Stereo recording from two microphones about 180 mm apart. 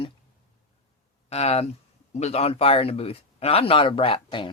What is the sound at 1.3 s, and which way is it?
Speech, 35° left (ahead or behind).